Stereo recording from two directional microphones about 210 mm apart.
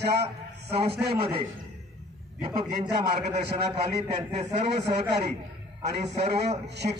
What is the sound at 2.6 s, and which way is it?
A man's voice, 25° right (ahead or behind).